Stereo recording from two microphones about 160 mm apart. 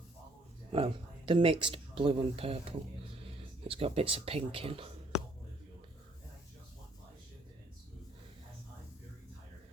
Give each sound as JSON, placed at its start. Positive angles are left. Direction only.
{"t": 0.7, "sound": "speech", "side_deg": -35}